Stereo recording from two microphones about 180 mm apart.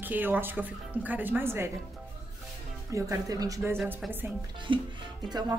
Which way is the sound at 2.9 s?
20° right (ahead or behind).